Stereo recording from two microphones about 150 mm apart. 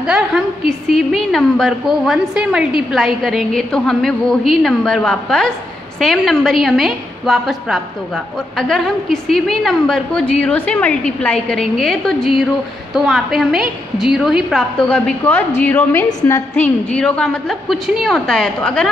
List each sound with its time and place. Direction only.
0.0 s a woman's voice: 5° right (ahead or behind); by 16.1 s 15° left (ahead or behind)
16.1 s a woman's voice: 25° left (ahead or behind)
16.5 s a woman's voice: 10° left (ahead or behind)